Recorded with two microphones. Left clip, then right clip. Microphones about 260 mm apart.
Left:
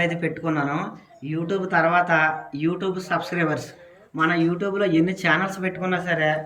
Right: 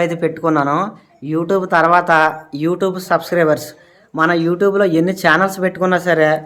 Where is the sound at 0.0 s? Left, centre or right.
Centre.